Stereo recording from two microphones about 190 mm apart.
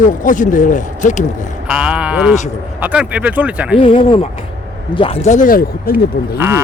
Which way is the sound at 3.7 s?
30° left (ahead or behind).